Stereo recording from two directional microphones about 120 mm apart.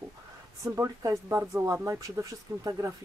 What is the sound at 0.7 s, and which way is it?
Speech, 30° right (ahead or behind).